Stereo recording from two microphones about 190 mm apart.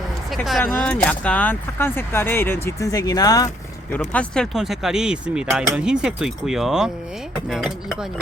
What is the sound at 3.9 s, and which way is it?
Speech, 10° left (ahead or behind).